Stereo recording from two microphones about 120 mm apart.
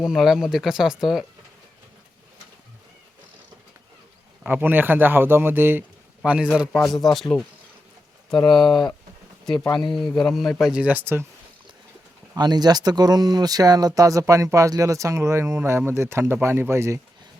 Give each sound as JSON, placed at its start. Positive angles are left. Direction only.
{"t": 0.0, "sound": "speech", "side_deg": -5}
{"t": 4.4, "sound": "speech", "side_deg": -15}
{"t": 6.7, "sound": "speech", "side_deg": 0}
{"t": 8.4, "sound": "speech", "side_deg": 0}
{"t": 12.3, "sound": "speech", "side_deg": -35}